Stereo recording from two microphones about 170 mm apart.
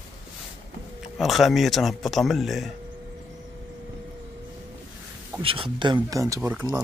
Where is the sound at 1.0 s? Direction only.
Centre (ahead or behind).